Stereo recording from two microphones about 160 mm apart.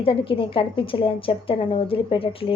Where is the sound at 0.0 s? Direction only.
35° left (ahead or behind).